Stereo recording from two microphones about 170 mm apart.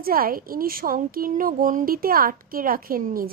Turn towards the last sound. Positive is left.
turn(degrees=-55)  # may be behind; listen again after turning